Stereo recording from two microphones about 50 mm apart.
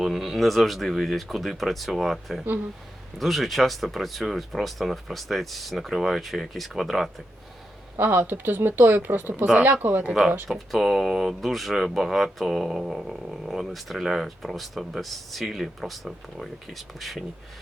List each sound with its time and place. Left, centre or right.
0.0 s speech: centre
7.9 s speech: right
10.7 s speech: centre